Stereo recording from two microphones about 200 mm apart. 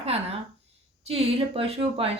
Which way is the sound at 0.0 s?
30° right (ahead or behind).